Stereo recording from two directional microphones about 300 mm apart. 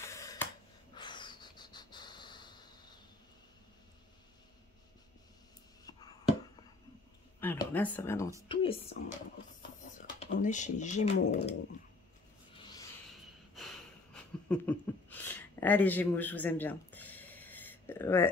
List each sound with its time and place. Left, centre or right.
0.0 s finger snapping: centre
0.9 s snort: centre
7.3 s speech: centre
9.9 s speech: left
12.5 s a sound: centre
14.1 s a sound: centre